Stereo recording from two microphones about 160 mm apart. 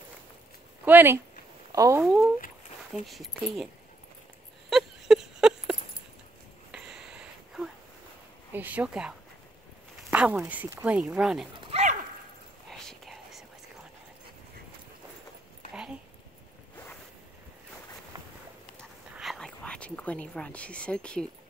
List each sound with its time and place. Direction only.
0.8 s speech: 15° right (ahead or behind)
2.0 s speech: 5° right (ahead or behind)
4.6 s a sound: centre (ahead or behind)
8.5 s speech: 10° right (ahead or behind)
10.1 s speech: 5° right (ahead or behind)
11.6 s dog: 45° right (ahead or behind)
12.6 s whispering: centre (ahead or behind)
15.7 s a sound: 5° right (ahead or behind)
19.1 s a sound: centre (ahead or behind)